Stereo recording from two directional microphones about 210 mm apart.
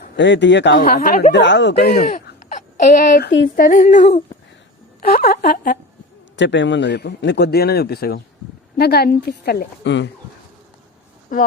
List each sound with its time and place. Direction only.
0.2 s speech: 60° left (ahead or behind)
1.3 s speech: 55° left (ahead or behind)
2.0 s speech: 35° left (ahead or behind); by 3.5 s 55° left (ahead or behind)
3.5 s female singing: 40° left (ahead or behind)
5.0 s a man's voice: 45° left (ahead or behind)
6.3 s a man's voice: 60° left (ahead or behind)